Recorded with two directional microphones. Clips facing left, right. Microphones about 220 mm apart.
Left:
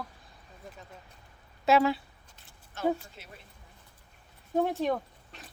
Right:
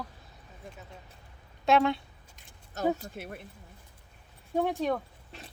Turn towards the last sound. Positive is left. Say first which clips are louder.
# even
turn(degrees=0)  # may be behind; listen again after turning